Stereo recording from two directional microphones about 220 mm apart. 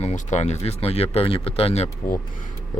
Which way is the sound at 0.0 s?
30° left (ahead or behind).